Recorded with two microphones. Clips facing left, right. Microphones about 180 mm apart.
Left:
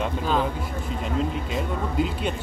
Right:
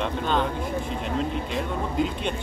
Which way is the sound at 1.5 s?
5° left (ahead or behind).